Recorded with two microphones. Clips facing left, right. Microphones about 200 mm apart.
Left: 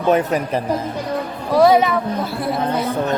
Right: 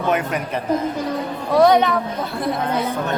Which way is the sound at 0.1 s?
35° left (ahead or behind).